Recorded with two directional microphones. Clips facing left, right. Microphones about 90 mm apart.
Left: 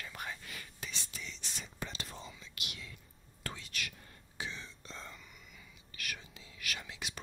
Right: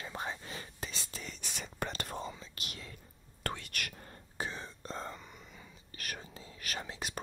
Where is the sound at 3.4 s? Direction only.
55° right (ahead or behind).